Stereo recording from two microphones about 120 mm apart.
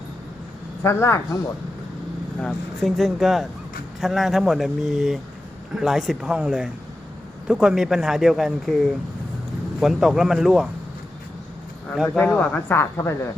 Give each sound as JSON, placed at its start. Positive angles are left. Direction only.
{"t": 0.8, "sound": "speech", "side_deg": 20}
{"t": 2.4, "sound": "speech", "side_deg": 5}
{"t": 12.0, "sound": "speech", "side_deg": 10}